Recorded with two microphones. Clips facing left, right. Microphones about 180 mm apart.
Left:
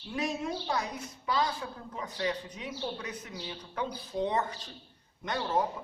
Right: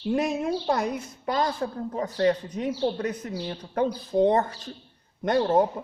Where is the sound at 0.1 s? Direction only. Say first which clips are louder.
Right 8 dB; 55° right (ahead or behind).